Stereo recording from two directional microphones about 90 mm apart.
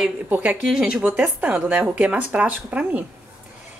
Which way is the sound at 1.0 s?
15° right (ahead or behind).